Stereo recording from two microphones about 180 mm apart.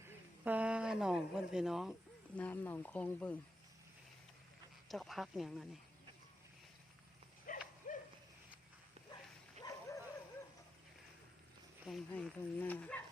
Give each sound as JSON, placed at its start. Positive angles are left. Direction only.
{"t": 0.0, "sound": "a woman's voice", "side_deg": -10}
{"t": 4.9, "sound": "speech", "side_deg": 0}
{"t": 7.5, "sound": "horse", "side_deg": 50}
{"t": 7.9, "sound": "a sound", "side_deg": 50}
{"t": 9.6, "sound": "dog", "side_deg": 20}
{"t": 11.9, "sound": "speech", "side_deg": 0}